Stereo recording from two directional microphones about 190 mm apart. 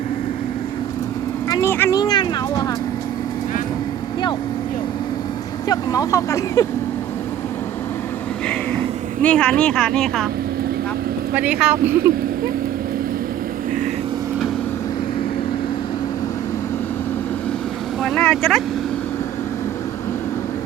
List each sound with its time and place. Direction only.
1.5 s a sound: 15° left (ahead or behind)
5.6 s speech: 20° left (ahead or behind)
9.2 s speech: 5° left (ahead or behind)
11.3 s speech: 5° right (ahead or behind)
18.0 s speech: centre (ahead or behind)